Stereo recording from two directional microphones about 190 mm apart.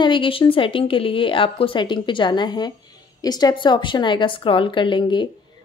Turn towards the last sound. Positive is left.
turn(degrees=25)  # may be behind; listen again after turning